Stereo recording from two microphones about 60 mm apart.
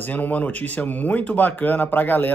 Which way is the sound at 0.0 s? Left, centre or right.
Left.